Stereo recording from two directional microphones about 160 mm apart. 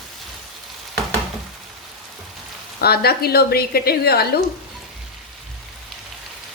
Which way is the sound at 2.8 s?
80° left.